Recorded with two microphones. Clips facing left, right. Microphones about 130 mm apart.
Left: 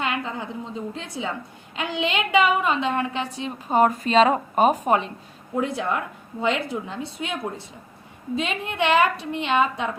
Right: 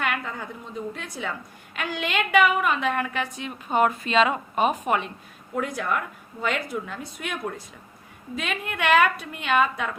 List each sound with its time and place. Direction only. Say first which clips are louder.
0.0 s a woman's voice: left 2 dB; 20° left (ahead or behind)